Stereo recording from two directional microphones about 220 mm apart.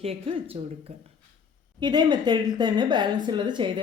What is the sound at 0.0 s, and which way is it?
Speech, 25° right (ahead or behind).